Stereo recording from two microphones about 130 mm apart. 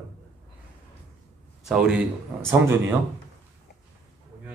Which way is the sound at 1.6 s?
5° right (ahead or behind).